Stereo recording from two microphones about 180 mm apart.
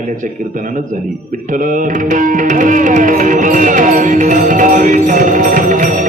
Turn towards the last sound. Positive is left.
turn(degrees=-45)  # may be behind; listen again after turning